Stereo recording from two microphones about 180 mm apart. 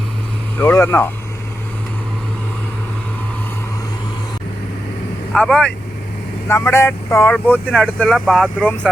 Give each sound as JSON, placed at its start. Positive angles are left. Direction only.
{"t": 0.6, "sound": "speech", "side_deg": 10}
{"t": 5.3, "sound": "speech", "side_deg": 5}
{"t": 6.5, "sound": "speech", "side_deg": 15}